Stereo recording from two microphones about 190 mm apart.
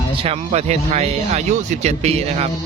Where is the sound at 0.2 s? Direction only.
35° right (ahead or behind).